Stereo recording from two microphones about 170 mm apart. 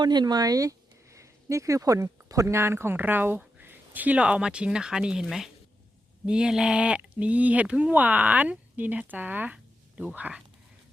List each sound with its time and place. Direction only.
0.0 s speech: 25° right (ahead or behind); by 10.4 s 5° right (ahead or behind)